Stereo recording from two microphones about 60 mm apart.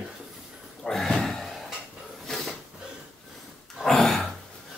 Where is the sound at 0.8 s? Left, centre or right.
Centre.